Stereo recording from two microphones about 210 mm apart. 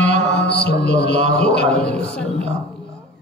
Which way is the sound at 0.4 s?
50° left (ahead or behind).